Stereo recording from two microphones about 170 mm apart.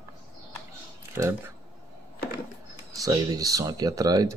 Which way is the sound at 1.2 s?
15° right (ahead or behind).